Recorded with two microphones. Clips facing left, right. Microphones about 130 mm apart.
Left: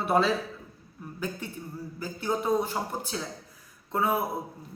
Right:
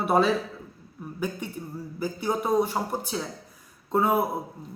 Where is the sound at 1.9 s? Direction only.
15° right (ahead or behind).